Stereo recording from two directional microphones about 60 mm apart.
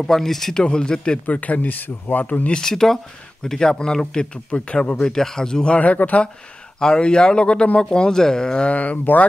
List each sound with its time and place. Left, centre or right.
0.0 s speech: centre
2.6 s speech: centre; by 6.2 s left
6.8 s speech: centre
8.7 s speech: left